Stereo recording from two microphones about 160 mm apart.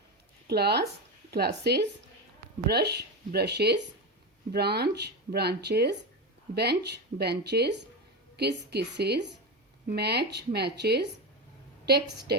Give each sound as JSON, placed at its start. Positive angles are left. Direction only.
{"t": 0.4, "sound": "speech", "side_deg": -90}